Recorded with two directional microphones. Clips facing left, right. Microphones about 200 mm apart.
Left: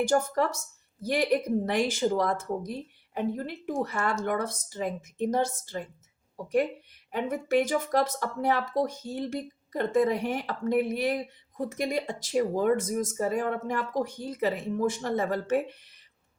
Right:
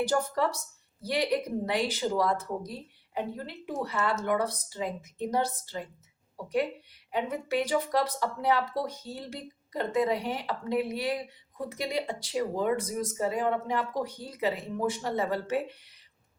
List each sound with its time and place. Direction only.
0.0 s speech: 45° left (ahead or behind)